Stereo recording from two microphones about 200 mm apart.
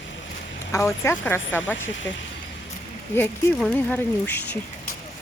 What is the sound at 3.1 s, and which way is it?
Speech, 10° left (ahead or behind).